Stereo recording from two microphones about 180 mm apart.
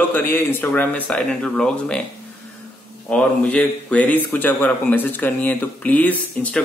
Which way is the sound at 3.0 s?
5° left (ahead or behind).